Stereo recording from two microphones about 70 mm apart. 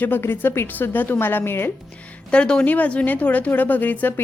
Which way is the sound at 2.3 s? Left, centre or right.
Centre.